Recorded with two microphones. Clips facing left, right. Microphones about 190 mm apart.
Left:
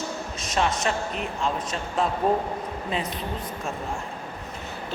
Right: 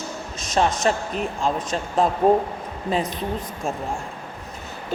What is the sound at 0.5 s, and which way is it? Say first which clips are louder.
Speech: right 4 dB; 40° right (ahead or behind).